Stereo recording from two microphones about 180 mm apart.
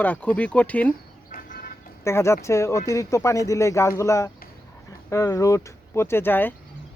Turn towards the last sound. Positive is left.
turn(degrees=10)  # may be behind; listen again after turning